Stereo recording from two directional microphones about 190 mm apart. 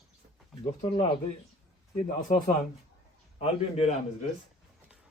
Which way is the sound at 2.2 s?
45° left (ahead or behind).